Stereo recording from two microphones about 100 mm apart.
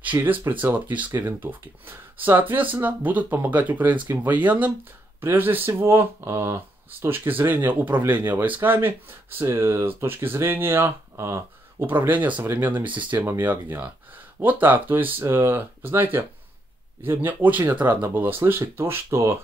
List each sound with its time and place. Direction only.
0.0 s speech: 20° right (ahead or behind)
12.8 s speech: 55° right (ahead or behind)
13.4 s speech: 15° right (ahead or behind)